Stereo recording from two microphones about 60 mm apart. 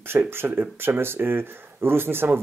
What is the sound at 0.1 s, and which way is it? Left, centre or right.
Speech, right.